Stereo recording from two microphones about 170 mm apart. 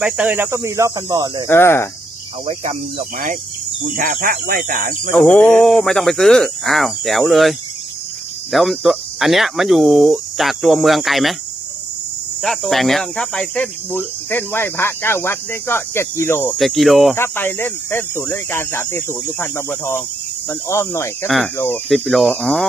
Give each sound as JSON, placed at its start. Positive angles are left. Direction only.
{"t": 0.0, "sound": "speech", "side_deg": -10}
{"t": 1.5, "sound": "speech", "side_deg": 15}
{"t": 3.9, "sound": "speech", "side_deg": -55}
{"t": 5.1, "sound": "speech", "side_deg": 5}
{"t": 8.5, "sound": "speech", "side_deg": 0}
{"t": 12.4, "sound": "speech", "side_deg": 0}
{"t": 16.6, "sound": "speech", "side_deg": 0}
{"t": 17.2, "sound": "speech", "side_deg": 10}
{"t": 21.2, "sound": "speech", "side_deg": 0}